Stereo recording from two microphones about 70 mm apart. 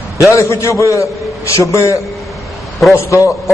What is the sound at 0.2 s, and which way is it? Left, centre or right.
A man's voice, left.